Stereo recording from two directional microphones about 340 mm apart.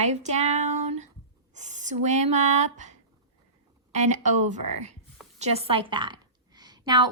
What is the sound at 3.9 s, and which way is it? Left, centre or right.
A woman's voice, right.